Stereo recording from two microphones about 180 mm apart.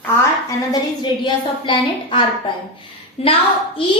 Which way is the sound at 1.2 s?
25° left (ahead or behind).